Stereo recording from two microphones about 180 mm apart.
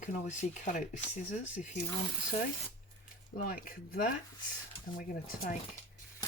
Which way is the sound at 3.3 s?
50° left (ahead or behind).